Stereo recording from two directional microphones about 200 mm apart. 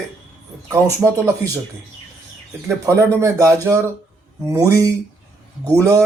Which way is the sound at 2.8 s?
15° right (ahead or behind).